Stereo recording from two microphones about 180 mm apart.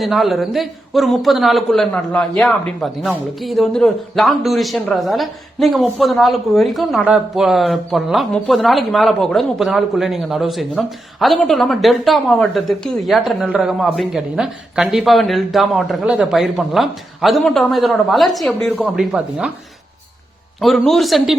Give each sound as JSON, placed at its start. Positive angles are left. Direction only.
{"t": 0.0, "sound": "a man's voice", "side_deg": 0}
{"t": 20.6, "sound": "a man's voice", "side_deg": 0}